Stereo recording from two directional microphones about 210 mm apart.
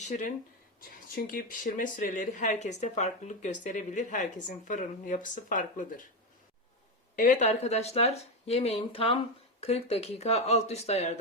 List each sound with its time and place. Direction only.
0.0 s speech: 35° left (ahead or behind)
7.2 s speech: 35° left (ahead or behind)